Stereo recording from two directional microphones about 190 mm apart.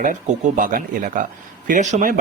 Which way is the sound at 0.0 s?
40° right (ahead or behind).